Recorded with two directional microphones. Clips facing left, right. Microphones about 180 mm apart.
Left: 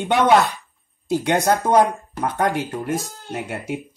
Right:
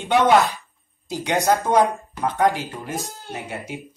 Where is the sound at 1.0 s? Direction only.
60° left (ahead or behind).